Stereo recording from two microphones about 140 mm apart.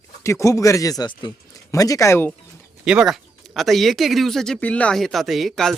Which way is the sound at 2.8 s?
5° right (ahead or behind).